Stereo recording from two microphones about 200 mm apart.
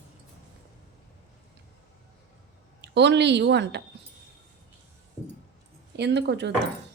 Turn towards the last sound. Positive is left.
turn(degrees=-60)  # may be behind; listen again after turning